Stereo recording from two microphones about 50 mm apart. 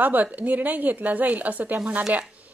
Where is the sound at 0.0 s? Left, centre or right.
Right.